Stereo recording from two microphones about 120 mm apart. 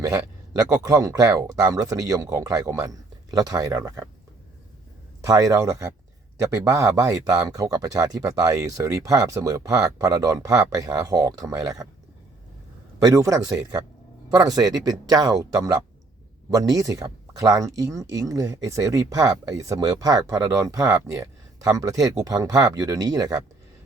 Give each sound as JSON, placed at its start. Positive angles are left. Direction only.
{"t": 0.0, "sound": "speech", "side_deg": -30}
{"t": 5.2, "sound": "speech", "side_deg": -30}
{"t": 13.1, "sound": "speech", "side_deg": -30}
{"t": 16.5, "sound": "speech", "side_deg": -30}